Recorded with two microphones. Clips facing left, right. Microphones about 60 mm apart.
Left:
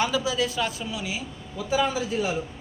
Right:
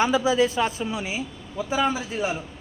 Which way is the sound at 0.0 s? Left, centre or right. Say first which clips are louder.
Right 5 dB; right.